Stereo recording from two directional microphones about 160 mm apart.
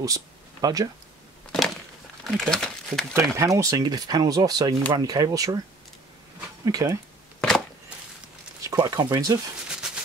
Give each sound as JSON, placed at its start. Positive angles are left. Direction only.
{"t": 0.0, "sound": "speech", "side_deg": -20}
{"t": 2.2, "sound": "speech", "side_deg": 5}
{"t": 3.2, "sound": "speech", "side_deg": -20}
{"t": 6.6, "sound": "speech", "side_deg": -20}
{"t": 7.3, "sound": "a sound", "side_deg": 5}
{"t": 8.6, "sound": "speech", "side_deg": -20}